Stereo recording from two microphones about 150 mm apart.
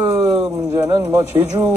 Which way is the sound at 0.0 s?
25° right (ahead or behind).